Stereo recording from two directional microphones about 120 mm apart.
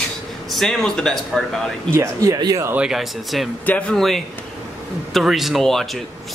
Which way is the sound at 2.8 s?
Centre (ahead or behind).